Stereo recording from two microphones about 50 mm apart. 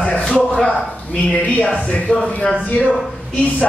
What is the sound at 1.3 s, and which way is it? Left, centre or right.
Speech, left.